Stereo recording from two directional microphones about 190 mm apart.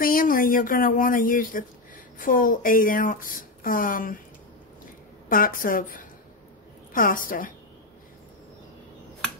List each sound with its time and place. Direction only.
0.0 s speech: 50° left (ahead or behind)
5.3 s speech: 45° left (ahead or behind)